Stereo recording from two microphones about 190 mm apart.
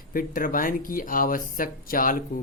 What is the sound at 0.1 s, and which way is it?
Speech, 45° left (ahead or behind).